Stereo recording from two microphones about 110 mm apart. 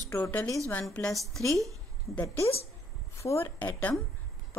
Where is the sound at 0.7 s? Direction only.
10° left (ahead or behind).